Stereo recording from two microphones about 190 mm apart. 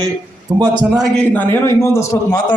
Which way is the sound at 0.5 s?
20° right (ahead or behind).